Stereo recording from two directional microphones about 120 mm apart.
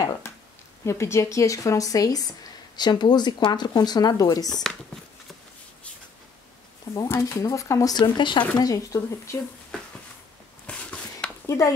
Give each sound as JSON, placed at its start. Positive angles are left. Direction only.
{"t": 0.2, "sound": "a sound", "side_deg": 20}
{"t": 0.8, "sound": "speech", "side_deg": 25}
{"t": 6.9, "sound": "speech", "side_deg": 25}
{"t": 8.5, "sound": "speech", "side_deg": 30}
{"t": 10.7, "sound": "a sound", "side_deg": 10}
{"t": 11.4, "sound": "speech", "side_deg": 25}